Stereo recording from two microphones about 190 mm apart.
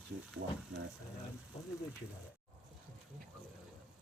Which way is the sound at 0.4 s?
55° right (ahead or behind).